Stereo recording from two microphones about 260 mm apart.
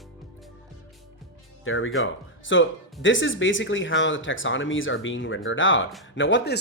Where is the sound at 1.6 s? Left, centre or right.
Left.